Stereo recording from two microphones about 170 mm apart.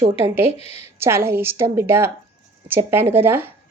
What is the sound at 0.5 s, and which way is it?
Speech, 35° left (ahead or behind).